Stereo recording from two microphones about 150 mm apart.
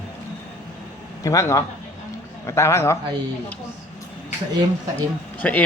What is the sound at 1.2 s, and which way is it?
A man's voice, 20° left (ahead or behind).